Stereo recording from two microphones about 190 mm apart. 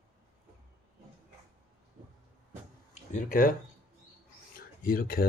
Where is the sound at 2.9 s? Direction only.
40° left (ahead or behind).